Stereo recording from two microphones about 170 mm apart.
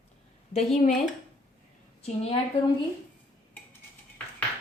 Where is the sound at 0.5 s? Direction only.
40° left (ahead or behind).